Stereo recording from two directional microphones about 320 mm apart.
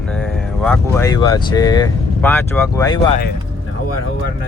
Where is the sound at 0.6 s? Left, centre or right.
Centre.